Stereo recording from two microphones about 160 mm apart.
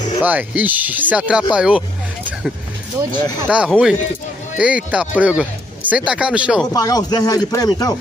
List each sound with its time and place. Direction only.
0.2 s speech: 10° right (ahead or behind)
3.5 s speech: 10° right (ahead or behind)
6.7 s speech: 25° left (ahead or behind)